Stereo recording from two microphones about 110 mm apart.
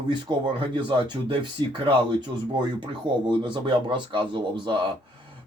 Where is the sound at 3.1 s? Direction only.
45° right (ahead or behind).